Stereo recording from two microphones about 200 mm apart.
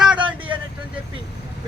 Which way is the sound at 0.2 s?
25° right (ahead or behind).